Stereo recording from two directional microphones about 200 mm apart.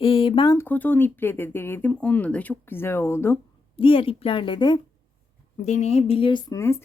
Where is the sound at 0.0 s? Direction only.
25° left (ahead or behind).